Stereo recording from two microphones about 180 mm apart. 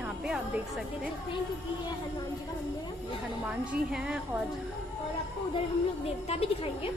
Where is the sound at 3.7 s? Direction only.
5° right (ahead or behind).